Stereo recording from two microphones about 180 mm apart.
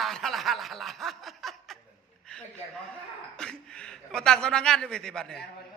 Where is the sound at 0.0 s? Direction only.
Centre (ahead or behind).